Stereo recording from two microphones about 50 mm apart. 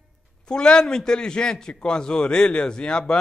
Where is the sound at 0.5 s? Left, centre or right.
Centre.